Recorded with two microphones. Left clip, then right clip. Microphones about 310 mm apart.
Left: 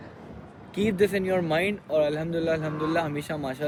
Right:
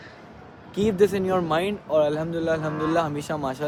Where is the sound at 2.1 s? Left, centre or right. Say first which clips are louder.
Right 2 dB; centre.